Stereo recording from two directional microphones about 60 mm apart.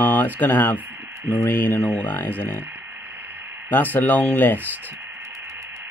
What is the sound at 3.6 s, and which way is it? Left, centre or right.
Speech, left.